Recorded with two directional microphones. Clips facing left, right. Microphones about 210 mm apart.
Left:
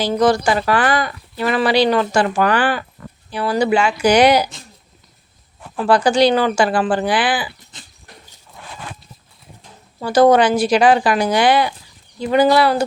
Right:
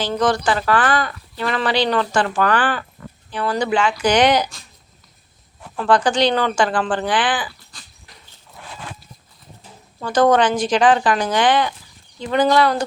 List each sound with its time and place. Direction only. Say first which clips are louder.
0.0 s speech: left 4 dB; 10° left (ahead or behind)
5.7 s speech: left 2 dB; 10° left (ahead or behind)
7.7 s dog: left 3 dB; 20° left (ahead or behind)
10.0 s speech: left 3 dB; 10° left (ahead or behind)